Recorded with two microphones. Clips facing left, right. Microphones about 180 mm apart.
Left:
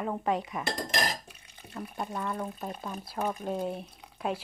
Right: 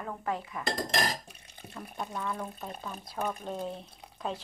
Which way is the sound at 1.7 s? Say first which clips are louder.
Left 3 dB; 10° left (ahead or behind).